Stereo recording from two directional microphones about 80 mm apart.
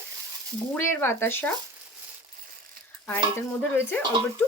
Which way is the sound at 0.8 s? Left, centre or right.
Left.